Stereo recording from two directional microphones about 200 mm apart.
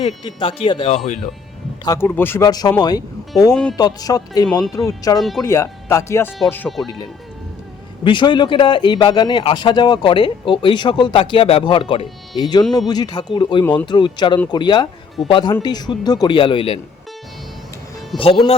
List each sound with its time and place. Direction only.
0.3 s a man's voice: 25° left (ahead or behind)
1.8 s speech: 15° left (ahead or behind)
3.5 s speech: 5° left (ahead or behind)
3.8 s a man's voice: 20° left (ahead or behind)
8.0 s a man's voice: 25° left (ahead or behind)
18.2 s a man's voice: 30° left (ahead or behind)